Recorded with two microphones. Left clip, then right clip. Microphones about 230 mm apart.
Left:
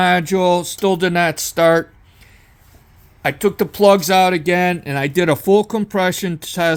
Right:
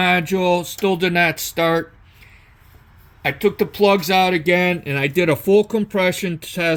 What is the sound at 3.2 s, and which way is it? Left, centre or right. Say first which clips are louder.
Speech: left 1 dB; left.